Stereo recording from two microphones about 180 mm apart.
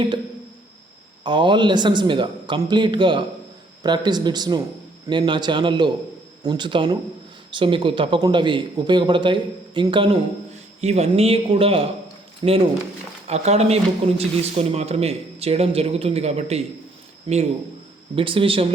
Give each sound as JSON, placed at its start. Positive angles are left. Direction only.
{"t": 1.2, "sound": "speech", "side_deg": -25}
{"t": 13.2, "sound": "speech", "side_deg": -35}